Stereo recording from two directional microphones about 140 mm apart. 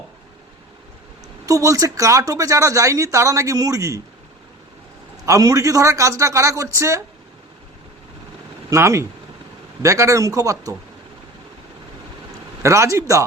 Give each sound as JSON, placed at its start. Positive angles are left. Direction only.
{"t": 1.5, "sound": "speech", "side_deg": -25}
{"t": 5.2, "sound": "speech", "side_deg": -25}
{"t": 8.7, "sound": "speech", "side_deg": -20}
{"t": 12.6, "sound": "speech", "side_deg": -20}